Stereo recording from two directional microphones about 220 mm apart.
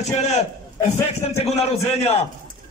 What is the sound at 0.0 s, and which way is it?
A man's voice, 30° left (ahead or behind).